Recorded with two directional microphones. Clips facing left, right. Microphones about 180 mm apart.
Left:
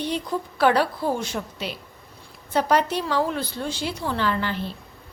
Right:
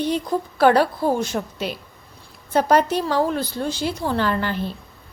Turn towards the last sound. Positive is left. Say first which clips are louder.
# right 3 dB
turn(degrees=-45)  # may be behind; listen again after turning